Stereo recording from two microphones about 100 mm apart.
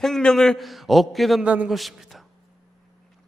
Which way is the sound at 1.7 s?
Centre (ahead or behind).